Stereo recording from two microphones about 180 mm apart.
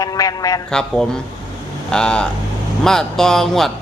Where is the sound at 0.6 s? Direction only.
5° left (ahead or behind).